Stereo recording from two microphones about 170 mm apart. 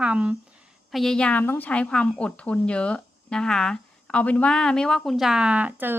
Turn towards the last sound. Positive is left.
turn(degrees=-10)  # may be behind; listen again after turning